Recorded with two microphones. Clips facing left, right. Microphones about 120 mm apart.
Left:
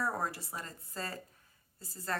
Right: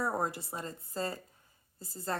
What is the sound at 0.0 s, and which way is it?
Speech, 20° right (ahead or behind).